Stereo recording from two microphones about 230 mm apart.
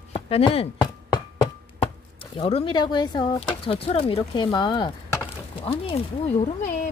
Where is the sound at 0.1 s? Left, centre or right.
Left.